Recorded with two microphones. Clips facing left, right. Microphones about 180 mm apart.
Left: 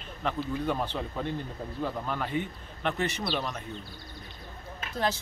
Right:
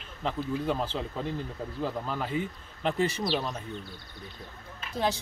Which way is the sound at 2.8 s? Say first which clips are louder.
Right 3 dB; 30° right (ahead or behind).